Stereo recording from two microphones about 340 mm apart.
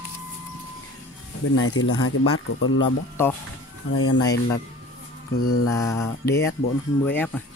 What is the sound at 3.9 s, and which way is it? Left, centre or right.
Speech, left.